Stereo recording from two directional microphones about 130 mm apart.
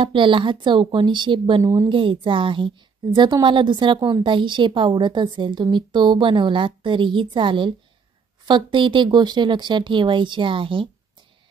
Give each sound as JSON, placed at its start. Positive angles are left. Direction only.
{"t": 0.0, "sound": "a woman's voice", "side_deg": -40}
{"t": 1.6, "sound": "a woman's voice", "side_deg": -25}
{"t": 1.9, "sound": "a woman's voice", "side_deg": -40}